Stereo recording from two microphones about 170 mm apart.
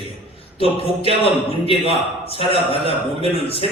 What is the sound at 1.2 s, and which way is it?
Speech, 35° left (ahead or behind).